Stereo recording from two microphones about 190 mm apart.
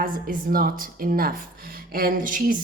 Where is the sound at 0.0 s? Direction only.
50° right (ahead or behind).